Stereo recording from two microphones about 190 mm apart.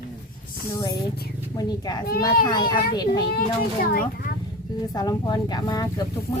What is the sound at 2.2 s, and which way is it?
Speech, 20° left (ahead or behind).